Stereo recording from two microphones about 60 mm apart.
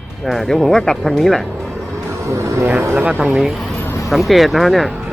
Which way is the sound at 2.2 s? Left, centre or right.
Right.